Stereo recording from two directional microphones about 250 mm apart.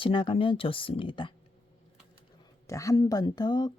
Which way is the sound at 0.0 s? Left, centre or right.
Centre.